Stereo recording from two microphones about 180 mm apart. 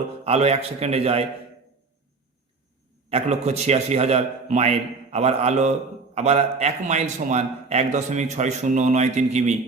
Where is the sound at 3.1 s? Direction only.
35° right (ahead or behind).